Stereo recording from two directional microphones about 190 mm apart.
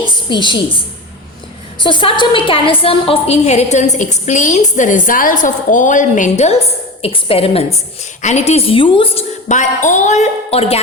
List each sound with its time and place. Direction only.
0.3 s a woman's voice: 25° left (ahead or behind)
1.8 s a woman's voice: 25° left (ahead or behind)
9.5 s a woman's voice: 40° left (ahead or behind)